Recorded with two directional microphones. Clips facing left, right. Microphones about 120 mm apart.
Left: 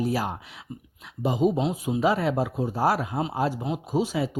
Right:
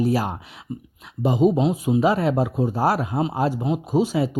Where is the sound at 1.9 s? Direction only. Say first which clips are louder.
Right 3 dB; 35° right (ahead or behind).